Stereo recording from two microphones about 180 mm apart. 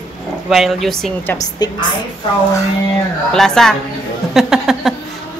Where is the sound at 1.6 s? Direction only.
20° left (ahead or behind).